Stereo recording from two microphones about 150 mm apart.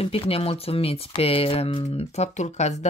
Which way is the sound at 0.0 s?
40° left (ahead or behind).